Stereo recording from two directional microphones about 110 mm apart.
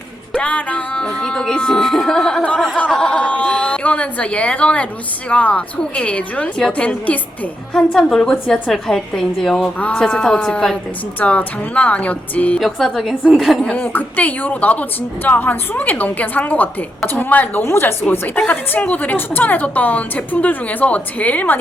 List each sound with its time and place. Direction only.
0.3 s a woman's voice: 10° left (ahead or behind)
12.5 s a woman's voice: centre (ahead or behind)